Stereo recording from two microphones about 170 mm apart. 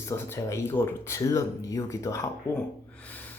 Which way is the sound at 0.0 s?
15° left (ahead or behind).